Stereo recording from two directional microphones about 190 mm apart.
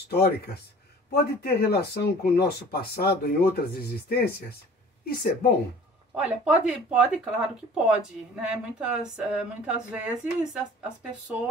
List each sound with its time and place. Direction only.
0.1 s a woman's voice: 55° left (ahead or behind)
6.1 s speech: 5° right (ahead or behind)